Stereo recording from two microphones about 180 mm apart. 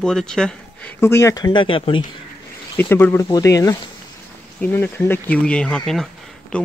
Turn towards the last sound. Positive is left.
turn(degrees=5)  # may be behind; listen again after turning